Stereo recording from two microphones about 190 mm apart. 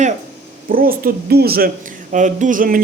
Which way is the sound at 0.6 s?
50° right (ahead or behind).